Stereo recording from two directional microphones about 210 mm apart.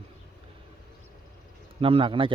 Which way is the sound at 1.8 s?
25° right (ahead or behind).